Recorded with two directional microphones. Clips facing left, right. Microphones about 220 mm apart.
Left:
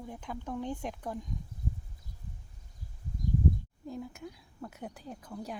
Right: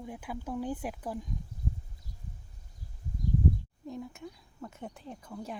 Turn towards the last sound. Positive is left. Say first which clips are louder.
# even
turn(degrees=0)  # may be behind; listen again after turning